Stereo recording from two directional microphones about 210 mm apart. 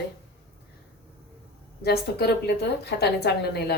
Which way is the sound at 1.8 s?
50° left (ahead or behind).